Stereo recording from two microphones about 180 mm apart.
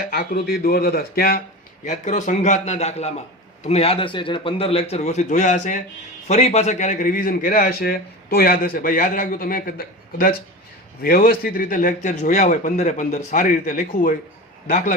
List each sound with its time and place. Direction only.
0.0 s speech: 55° left (ahead or behind)
1.8 s a man's voice: 40° left (ahead or behind)